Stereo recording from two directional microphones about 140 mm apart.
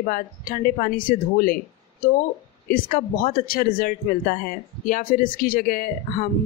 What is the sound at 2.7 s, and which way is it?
Speech, 75° left (ahead or behind).